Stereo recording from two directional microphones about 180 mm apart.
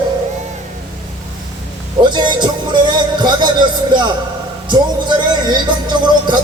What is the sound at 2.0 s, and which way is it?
Music, 25° right (ahead or behind).